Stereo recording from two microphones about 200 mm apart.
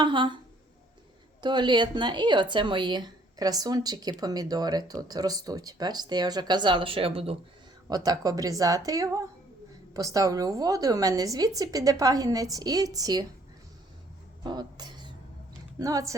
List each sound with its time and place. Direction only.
0.0 s a woman's voice: 25° right (ahead or behind)
1.4 s a woman's voice: 20° right (ahead or behind)
14.4 s a sound: 20° right (ahead or behind)
15.8 s a woman's voice: 15° right (ahead or behind)